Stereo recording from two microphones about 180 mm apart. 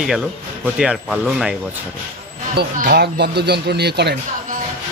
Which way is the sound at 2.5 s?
60° right (ahead or behind).